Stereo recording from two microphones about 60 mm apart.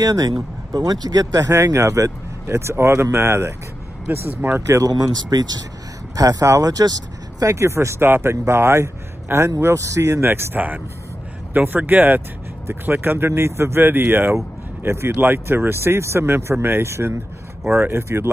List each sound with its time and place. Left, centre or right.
0.0 s speech: right
2.4 s speech: right
4.3 s speech: right
4.6 s speech: right
6.1 s speech: right
7.5 s speech: right
10.2 s speech: right
17.6 s speech: right
18.0 s speech: right